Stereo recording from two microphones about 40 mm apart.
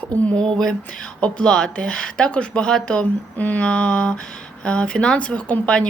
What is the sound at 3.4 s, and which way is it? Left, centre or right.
Speech, left.